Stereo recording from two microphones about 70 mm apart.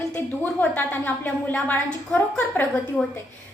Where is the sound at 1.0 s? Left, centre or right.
Left.